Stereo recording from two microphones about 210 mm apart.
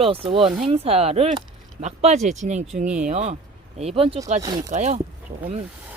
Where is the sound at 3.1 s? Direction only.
30° right (ahead or behind).